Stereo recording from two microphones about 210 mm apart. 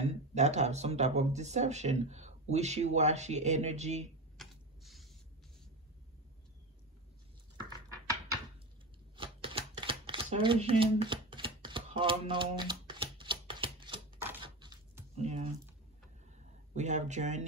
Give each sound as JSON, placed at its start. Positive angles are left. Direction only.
{"t": 0.0, "sound": "speech", "side_deg": -35}
{"t": 4.4, "sound": "a sound", "side_deg": 0}
{"t": 9.1, "sound": "shuffling cards", "side_deg": -25}
{"t": 15.1, "sound": "speech", "side_deg": -30}
{"t": 16.7, "sound": "speech", "side_deg": -35}